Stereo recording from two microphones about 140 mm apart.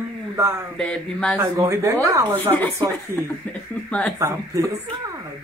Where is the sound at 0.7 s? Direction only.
5° left (ahead or behind).